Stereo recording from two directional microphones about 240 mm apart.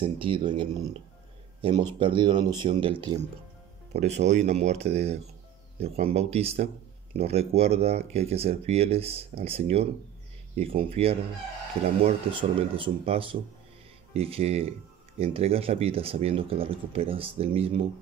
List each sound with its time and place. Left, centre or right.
0.0 s speech: right